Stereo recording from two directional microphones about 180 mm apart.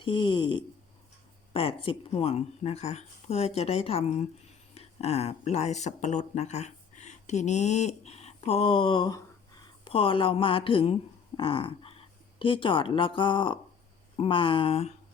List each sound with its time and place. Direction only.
0.0 s a woman's voice: 25° left (ahead or behind)